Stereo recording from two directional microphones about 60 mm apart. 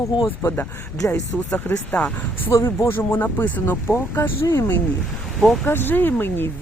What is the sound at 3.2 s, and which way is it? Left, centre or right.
Speech, left.